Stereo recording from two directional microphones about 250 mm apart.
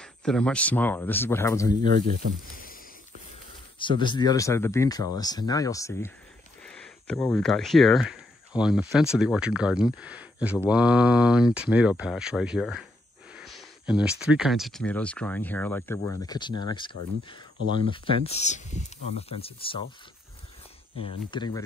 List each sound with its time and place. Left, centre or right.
0.0 s speech: centre
1.8 s speech: right
2.5 s a sound: left
3.8 s speech: centre
17.9 s speech: left
21.0 s speech: centre